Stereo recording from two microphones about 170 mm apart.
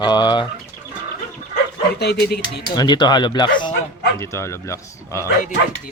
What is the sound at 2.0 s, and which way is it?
Speech, 70° left (ahead or behind).